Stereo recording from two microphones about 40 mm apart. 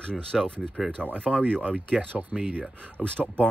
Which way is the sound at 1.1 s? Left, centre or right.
Left.